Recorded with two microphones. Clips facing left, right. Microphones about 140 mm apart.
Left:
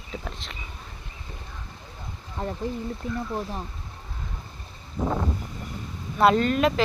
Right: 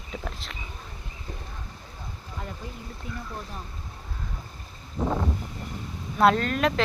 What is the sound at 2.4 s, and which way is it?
Speech, 35° left (ahead or behind).